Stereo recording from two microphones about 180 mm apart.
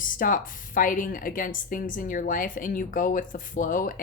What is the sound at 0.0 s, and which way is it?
A woman's voice, 50° left (ahead or behind).